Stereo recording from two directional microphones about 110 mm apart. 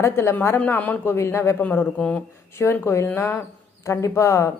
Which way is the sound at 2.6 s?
25° left (ahead or behind).